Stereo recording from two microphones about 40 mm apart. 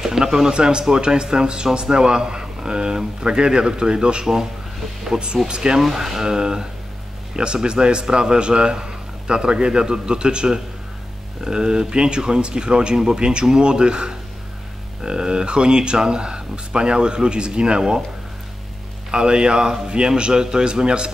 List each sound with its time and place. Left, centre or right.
0.0 s speech: centre
5.8 s speech: centre
19.0 s speech: right